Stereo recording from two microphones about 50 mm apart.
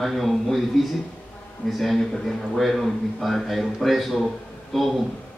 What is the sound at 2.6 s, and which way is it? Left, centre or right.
Speech, centre.